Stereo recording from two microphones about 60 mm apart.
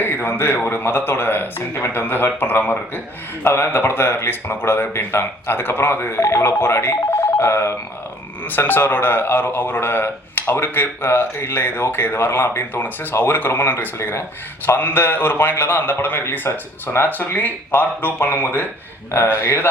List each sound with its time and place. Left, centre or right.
0.0 s a man's voice: left
8.4 s a man's voice: left
19.1 s a man's voice: left